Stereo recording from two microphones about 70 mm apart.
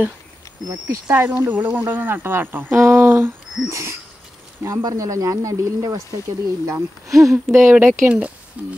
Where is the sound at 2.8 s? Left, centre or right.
Right.